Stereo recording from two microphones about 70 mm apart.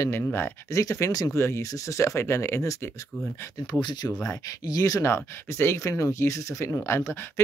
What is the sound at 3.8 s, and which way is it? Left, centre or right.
Speech, left.